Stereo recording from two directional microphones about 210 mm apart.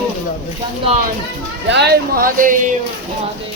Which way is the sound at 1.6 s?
55° right (ahead or behind).